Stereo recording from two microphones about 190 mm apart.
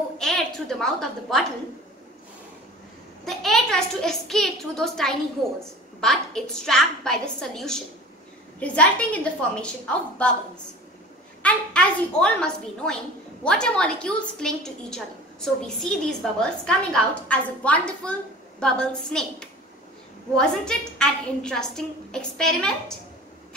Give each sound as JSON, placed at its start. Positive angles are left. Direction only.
{"t": 0.2, "sound": "a woman's voice", "side_deg": 0}
{"t": 3.3, "sound": "a woman's voice", "side_deg": 0}
{"t": 11.4, "sound": "a woman's voice", "side_deg": 5}